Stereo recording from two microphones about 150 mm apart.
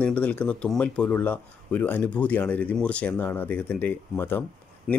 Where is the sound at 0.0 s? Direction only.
10° left (ahead or behind).